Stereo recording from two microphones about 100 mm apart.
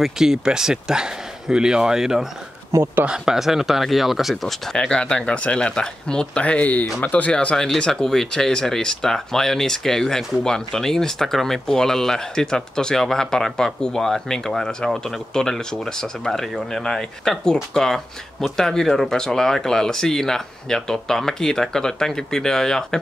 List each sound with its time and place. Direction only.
0.0 s speech: 5° right (ahead or behind)
2.7 s speech: 25° right (ahead or behind)
3.1 s speech: 5° right (ahead or behind)